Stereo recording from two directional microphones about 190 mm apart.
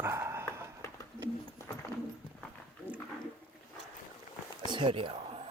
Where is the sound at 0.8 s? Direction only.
15° left (ahead or behind).